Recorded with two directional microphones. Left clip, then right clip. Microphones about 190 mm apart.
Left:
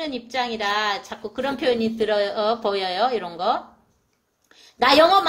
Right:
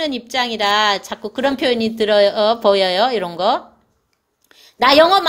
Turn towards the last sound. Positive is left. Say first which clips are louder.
# right 4 dB
turn(degrees=-45)  # may be behind; listen again after turning